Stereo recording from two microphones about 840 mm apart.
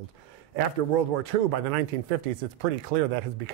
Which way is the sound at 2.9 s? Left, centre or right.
Right.